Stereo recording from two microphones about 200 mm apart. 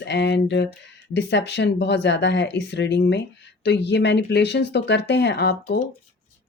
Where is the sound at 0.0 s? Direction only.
60° left (ahead or behind).